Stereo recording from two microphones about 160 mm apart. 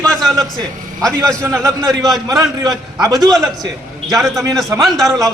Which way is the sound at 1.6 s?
20° right (ahead or behind).